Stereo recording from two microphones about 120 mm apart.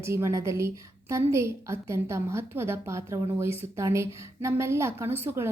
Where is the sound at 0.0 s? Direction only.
20° right (ahead or behind).